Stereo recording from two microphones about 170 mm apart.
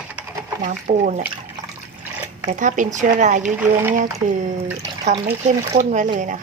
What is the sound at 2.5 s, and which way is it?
Speech, 50° right (ahead or behind).